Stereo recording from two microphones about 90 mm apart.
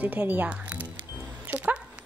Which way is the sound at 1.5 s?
20° right (ahead or behind).